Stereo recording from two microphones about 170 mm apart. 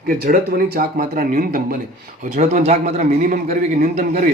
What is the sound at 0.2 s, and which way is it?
A man's voice, 60° right (ahead or behind).